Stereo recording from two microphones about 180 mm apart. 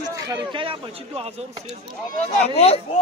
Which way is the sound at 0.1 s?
25° right (ahead or behind).